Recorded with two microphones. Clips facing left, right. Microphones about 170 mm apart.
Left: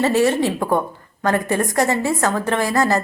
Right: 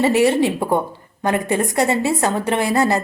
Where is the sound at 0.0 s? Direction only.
15° right (ahead or behind).